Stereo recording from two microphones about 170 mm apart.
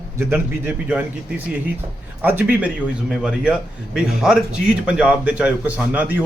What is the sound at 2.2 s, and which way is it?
A man's voice, 10° right (ahead or behind).